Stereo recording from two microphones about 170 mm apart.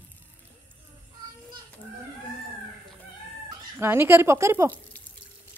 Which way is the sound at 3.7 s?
15° right (ahead or behind).